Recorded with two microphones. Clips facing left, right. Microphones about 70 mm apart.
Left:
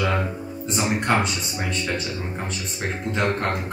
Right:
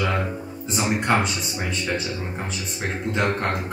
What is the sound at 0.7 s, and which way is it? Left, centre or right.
Speech, centre.